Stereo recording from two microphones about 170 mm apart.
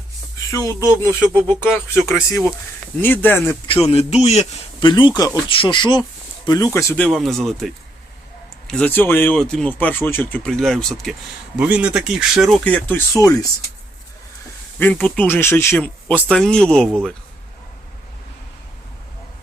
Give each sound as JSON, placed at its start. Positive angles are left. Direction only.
{"t": 0.5, "sound": "speech", "side_deg": 20}
{"t": 0.8, "sound": "speech", "side_deg": -20}
{"t": 1.6, "sound": "speech", "side_deg": 15}
{"t": 3.8, "sound": "a man's voice", "side_deg": 40}
{"t": 4.8, "sound": "speech", "side_deg": 30}
{"t": 7.1, "sound": "speech", "side_deg": 0}
{"t": 14.8, "sound": "speech", "side_deg": 10}